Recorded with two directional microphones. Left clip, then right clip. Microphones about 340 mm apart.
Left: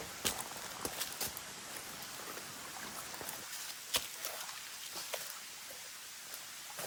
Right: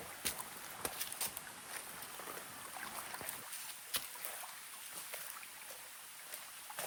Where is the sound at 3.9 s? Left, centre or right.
Centre.